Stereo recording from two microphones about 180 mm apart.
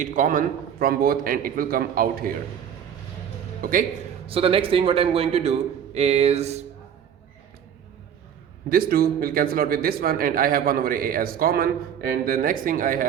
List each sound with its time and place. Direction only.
0.0 s speech: 45° right (ahead or behind)
3.6 s speech: 50° right (ahead or behind)
4.3 s a man's voice: 30° right (ahead or behind)
8.7 s speech: 55° right (ahead or behind)